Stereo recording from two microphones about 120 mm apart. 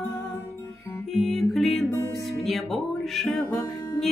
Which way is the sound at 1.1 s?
Centre (ahead or behind).